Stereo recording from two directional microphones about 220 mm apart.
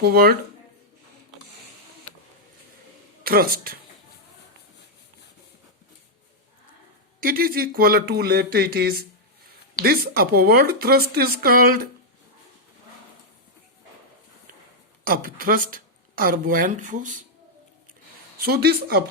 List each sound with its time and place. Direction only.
0.0 s speech: 45° right (ahead or behind)
3.2 s speech: 45° right (ahead or behind)
7.2 s speech: 40° right (ahead or behind)
15.0 s speech: 40° right (ahead or behind)
18.3 s speech: 45° right (ahead or behind)